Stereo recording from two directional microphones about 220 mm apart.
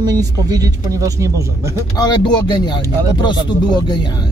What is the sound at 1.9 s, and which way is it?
Speech, 20° left (ahead or behind).